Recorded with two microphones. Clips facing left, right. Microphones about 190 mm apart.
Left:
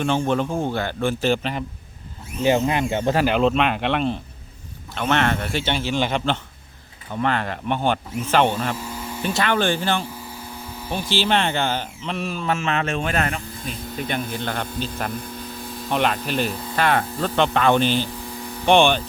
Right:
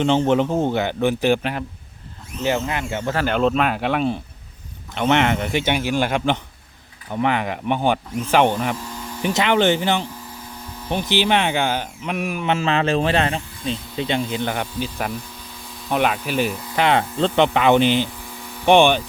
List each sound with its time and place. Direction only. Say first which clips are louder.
0.0 s a man's voice: right 4 dB; 20° right (ahead or behind)
2.4 s speech: left 3 dB; 15° left (ahead or behind)
3.2 s speech: even; centre (ahead or behind)
4.9 s speech: right 3 dB; 15° right (ahead or behind)
8.8 s a sound: left 1 dB; 10° left (ahead or behind)
9.2 s a man's voice: right 4 dB; 20° right (ahead or behind)
12.5 s speech: right 5 dB; 30° right (ahead or behind); by 19.0 s 15° right (ahead or behind)